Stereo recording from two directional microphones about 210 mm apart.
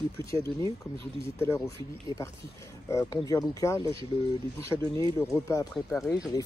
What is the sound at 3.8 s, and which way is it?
Speech, 25° right (ahead or behind).